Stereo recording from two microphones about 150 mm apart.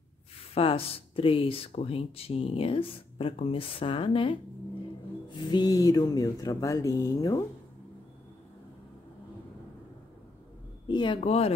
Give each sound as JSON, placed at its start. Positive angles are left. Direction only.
{"t": 0.6, "sound": "speech", "side_deg": 40}
{"t": 10.9, "sound": "speech", "side_deg": 30}
{"t": 11.1, "sound": "speech", "side_deg": 45}